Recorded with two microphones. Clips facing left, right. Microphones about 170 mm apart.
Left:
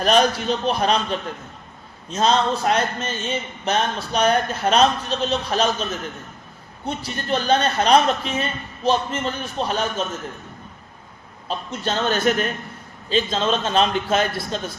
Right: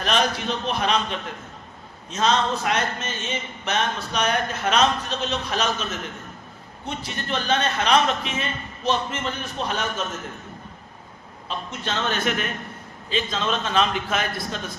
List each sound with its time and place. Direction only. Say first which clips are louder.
0.0 s speech: left 5 dB; 40° left (ahead or behind)
11.4 s a man's voice: left 4 dB; 35° left (ahead or behind)